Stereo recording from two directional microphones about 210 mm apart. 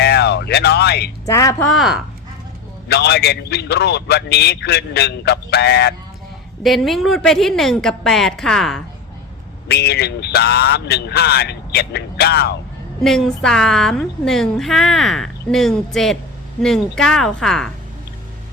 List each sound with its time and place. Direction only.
0.0 s music: 50° left (ahead or behind)
1.2 s a woman's voice: 15° left (ahead or behind)
1.7 s a woman's voice: centre (ahead or behind)
2.9 s a man's voice: 50° left (ahead or behind)
6.6 s a woman's voice: centre (ahead or behind)
9.6 s a man's voice: 50° left (ahead or behind)
13.0 s a woman's voice: centre (ahead or behind)